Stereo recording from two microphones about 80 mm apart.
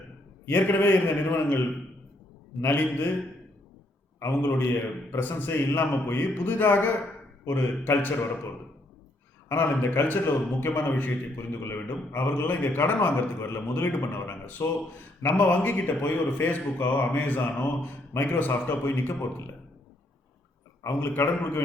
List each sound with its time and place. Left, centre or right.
0.4 s a man's voice: left
4.2 s a man's voice: left
9.5 s a man's voice: left
21.1 s a man's voice: left